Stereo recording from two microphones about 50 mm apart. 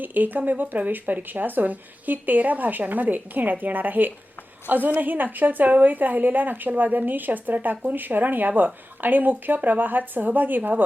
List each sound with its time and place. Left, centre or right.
0.0 s speech: right